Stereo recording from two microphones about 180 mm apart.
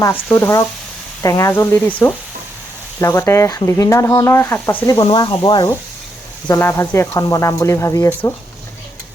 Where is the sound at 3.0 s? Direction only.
15° left (ahead or behind).